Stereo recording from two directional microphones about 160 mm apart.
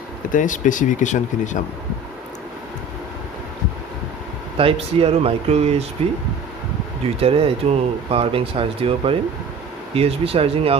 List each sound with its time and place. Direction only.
0.3 s speech: 55° left (ahead or behind)
4.5 s speech: 35° right (ahead or behind)
7.2 s speech: 35° right (ahead or behind)